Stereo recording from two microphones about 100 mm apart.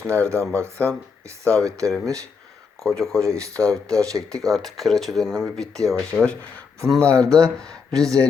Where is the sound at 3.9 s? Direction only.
35° right (ahead or behind).